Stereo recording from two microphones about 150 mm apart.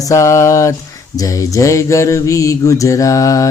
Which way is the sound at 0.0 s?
20° left (ahead or behind).